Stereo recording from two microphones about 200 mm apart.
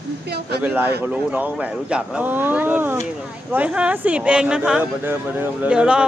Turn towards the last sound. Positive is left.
turn(degrees=-5)  # may be behind; listen again after turning